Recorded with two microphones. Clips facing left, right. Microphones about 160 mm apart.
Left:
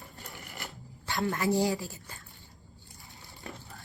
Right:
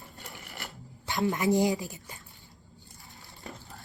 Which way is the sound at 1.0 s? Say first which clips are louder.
Right 2 dB; 20° right (ahead or behind).